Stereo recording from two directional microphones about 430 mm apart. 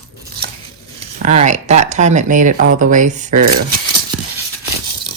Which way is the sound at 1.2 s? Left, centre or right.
Centre.